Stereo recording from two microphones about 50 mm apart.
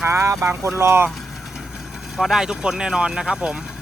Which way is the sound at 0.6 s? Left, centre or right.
Right.